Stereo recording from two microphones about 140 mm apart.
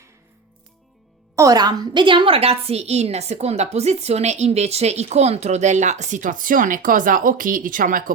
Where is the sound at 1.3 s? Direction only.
25° right (ahead or behind).